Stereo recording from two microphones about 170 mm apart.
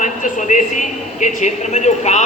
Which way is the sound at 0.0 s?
45° left (ahead or behind).